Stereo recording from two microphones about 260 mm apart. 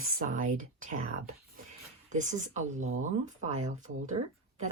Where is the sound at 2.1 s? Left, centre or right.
Right.